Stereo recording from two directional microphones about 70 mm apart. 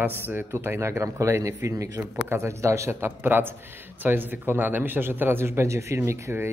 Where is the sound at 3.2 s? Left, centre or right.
Right.